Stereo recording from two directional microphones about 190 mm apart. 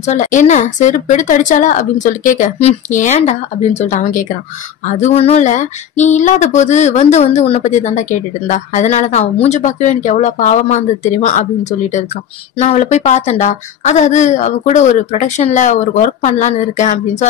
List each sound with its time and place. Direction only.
0.0 s speech: 40° left (ahead or behind)
12.5 s speech: 35° left (ahead or behind)